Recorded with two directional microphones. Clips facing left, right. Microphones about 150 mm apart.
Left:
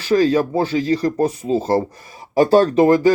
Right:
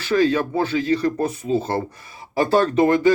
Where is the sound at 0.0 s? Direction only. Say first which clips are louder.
Left 3 dB; 35° left (ahead or behind).